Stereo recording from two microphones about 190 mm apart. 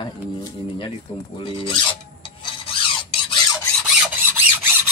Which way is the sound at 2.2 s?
25° left (ahead or behind).